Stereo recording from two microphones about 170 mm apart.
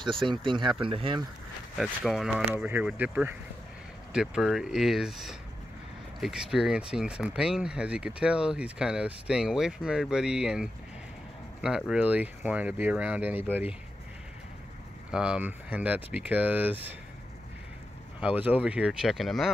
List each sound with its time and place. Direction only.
0.0 s speech: 30° right (ahead or behind)
1.8 s speech: centre (ahead or behind)
15.0 s speech: 5° right (ahead or behind)
18.2 s speech: 10° right (ahead or behind)